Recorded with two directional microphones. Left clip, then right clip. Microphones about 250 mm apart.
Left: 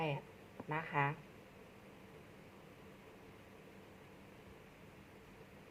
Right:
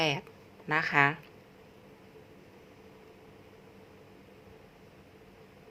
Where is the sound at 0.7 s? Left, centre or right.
Right.